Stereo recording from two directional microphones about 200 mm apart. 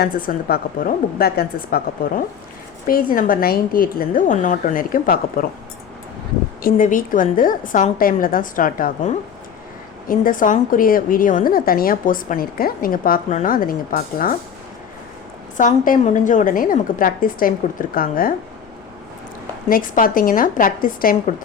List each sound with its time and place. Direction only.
0.0 s a woman's voice: 45° left (ahead or behind)
6.6 s a woman's voice: 45° left (ahead or behind)
15.5 s a woman's voice: 40° left (ahead or behind)
19.6 s a woman's voice: 45° left (ahead or behind)